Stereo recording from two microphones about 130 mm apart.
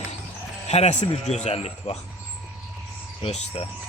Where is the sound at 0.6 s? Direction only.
55° left (ahead or behind).